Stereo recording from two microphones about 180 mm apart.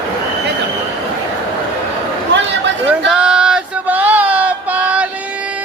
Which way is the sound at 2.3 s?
80° right.